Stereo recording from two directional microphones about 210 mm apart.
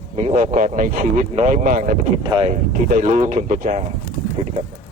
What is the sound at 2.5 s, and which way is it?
Speech, 40° right (ahead or behind).